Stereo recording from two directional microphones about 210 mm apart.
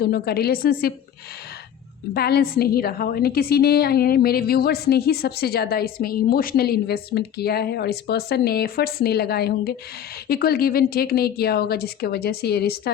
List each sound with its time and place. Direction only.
0.0 s a woman's voice: 50° left (ahead or behind)
2.1 s a woman's voice: 50° left (ahead or behind)